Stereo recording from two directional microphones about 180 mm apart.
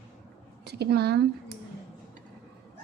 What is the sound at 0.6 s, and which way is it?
Speech, 65° right (ahead or behind).